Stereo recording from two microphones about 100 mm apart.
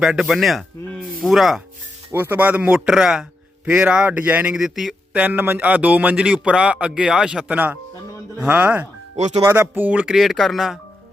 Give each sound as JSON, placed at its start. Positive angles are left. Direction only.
{"t": 0.0, "sound": "speech", "side_deg": -5}
{"t": 2.1, "sound": "a man's voice", "side_deg": -20}
{"t": 5.1, "sound": "a man's voice", "side_deg": -15}
{"t": 10.2, "sound": "speech", "side_deg": 0}